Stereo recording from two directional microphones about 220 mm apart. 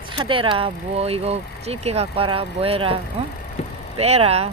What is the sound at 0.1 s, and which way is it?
Speech, 25° right (ahead or behind).